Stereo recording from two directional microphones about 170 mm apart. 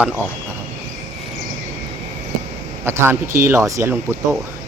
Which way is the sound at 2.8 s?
15° right (ahead or behind).